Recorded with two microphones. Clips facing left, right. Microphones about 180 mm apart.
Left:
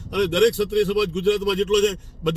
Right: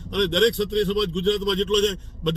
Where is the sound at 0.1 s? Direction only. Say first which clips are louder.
Left 2 dB; 10° left (ahead or behind).